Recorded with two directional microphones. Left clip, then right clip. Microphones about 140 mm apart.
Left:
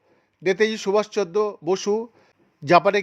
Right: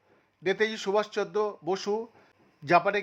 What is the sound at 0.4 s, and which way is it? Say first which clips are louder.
Speech: left 7 dB; 20° left (ahead or behind).